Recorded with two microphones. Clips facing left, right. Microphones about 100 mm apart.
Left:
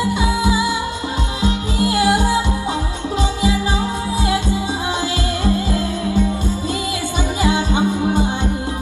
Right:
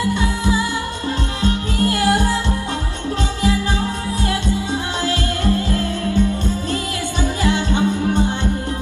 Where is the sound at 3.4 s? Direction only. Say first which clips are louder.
Right 2 dB; 15° left (ahead or behind).